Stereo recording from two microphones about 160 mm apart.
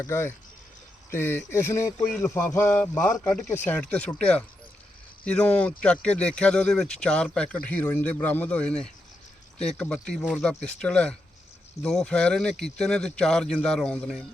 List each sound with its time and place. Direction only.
0.1 s speech: 15° left (ahead or behind)